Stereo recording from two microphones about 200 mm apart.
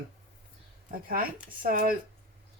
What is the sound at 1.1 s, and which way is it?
Speech, 45° right (ahead or behind).